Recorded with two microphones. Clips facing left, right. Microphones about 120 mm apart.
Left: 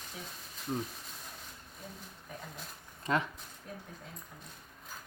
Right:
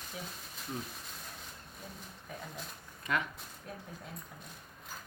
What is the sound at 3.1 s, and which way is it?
Speech, 25° left (ahead or behind).